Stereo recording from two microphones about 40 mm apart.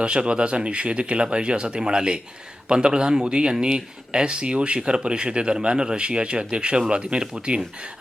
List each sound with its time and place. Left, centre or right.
0.0 s speech: right